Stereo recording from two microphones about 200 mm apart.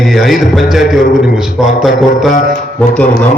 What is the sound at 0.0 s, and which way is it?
A man's voice, centre (ahead or behind).